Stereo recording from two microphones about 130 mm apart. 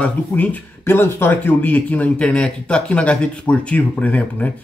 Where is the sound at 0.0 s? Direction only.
10° left (ahead or behind).